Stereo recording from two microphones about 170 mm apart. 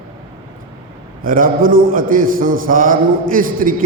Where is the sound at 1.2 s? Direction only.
55° right (ahead or behind).